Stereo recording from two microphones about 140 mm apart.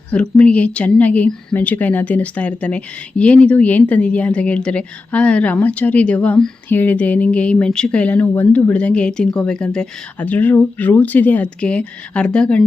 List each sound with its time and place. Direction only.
0.1 s a woman's voice: 10° left (ahead or behind)